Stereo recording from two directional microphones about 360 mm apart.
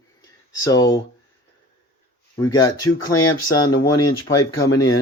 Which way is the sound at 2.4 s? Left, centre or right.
Centre.